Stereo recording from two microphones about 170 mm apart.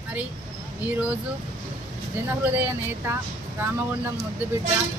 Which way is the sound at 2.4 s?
10° right (ahead or behind).